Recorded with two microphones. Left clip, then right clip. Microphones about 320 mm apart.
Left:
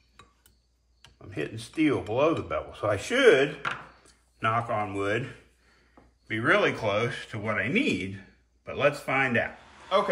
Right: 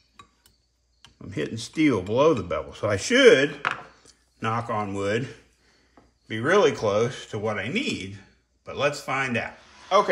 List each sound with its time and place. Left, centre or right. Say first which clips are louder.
1.3 s speech: right 4 dB; right
6.2 s speech: right 3 dB; centre
9.9 s speech: right 5 dB; right